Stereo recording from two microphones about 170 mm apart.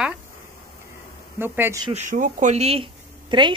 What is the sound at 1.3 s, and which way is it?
Speech, 10° right (ahead or behind).